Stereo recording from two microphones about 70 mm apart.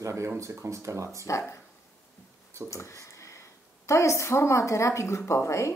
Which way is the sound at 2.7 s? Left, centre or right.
Left.